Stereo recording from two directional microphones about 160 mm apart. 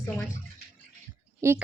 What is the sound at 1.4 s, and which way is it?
Speech, 20° right (ahead or behind).